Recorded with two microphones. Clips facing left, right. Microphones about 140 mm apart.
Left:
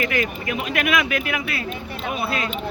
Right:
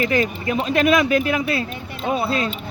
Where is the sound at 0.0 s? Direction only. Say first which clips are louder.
Right 4 dB; 30° right (ahead or behind).